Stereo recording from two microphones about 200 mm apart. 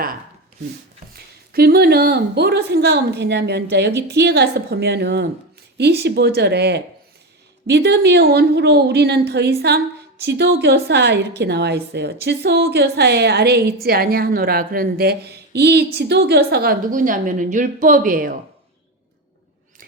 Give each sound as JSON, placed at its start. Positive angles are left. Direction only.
{"t": 1.1, "sound": "a woman's voice", "side_deg": -50}